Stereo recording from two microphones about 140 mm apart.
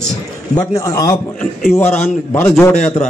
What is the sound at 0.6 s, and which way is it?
A man's voice, 25° left (ahead or behind).